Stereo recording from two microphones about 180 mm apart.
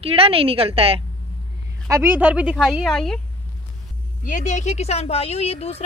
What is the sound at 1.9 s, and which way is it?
A woman's voice, 10° right (ahead or behind).